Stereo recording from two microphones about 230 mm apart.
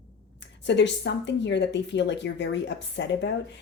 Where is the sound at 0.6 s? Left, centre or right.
Left.